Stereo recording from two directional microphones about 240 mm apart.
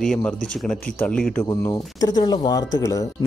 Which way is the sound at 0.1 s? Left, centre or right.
Centre.